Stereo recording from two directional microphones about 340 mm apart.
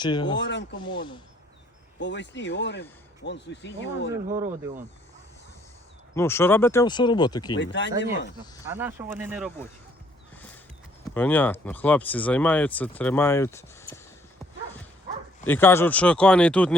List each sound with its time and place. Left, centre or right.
0.0 s speech: centre
0.3 s speech: left
0.8 s speech: centre
2.0 s speech: left
4.3 s speech: centre
6.1 s speech: centre
7.5 s speech: left
8.7 s speech: centre
10.3 s horse: centre
11.1 s speech: centre
15.4 s speech: centre